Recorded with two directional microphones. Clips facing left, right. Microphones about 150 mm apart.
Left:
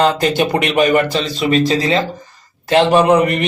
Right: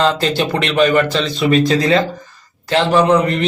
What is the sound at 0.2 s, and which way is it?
Speech, 15° left (ahead or behind).